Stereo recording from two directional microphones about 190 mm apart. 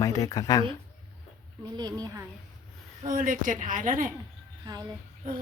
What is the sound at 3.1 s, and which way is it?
A woman's voice, 45° right (ahead or behind).